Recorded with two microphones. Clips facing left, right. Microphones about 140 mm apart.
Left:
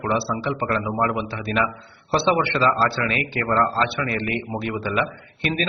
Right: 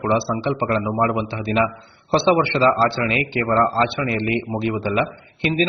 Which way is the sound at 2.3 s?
30° right (ahead or behind).